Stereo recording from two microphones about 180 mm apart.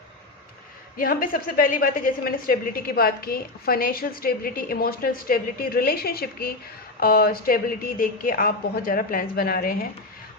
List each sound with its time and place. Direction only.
0.9 s a woman's voice: 50° left (ahead or behind)